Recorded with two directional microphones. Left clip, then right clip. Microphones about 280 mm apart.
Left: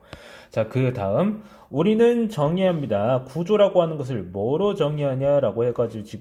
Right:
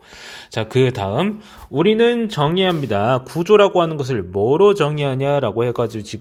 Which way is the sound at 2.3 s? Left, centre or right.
Right.